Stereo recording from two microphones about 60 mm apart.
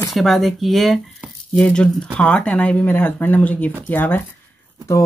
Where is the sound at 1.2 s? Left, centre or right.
Right.